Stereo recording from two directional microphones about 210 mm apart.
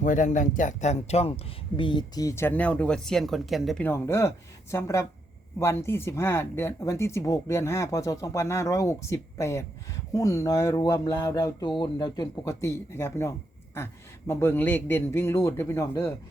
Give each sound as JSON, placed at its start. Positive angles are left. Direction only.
{"t": 0.0, "sound": "speech", "side_deg": 35}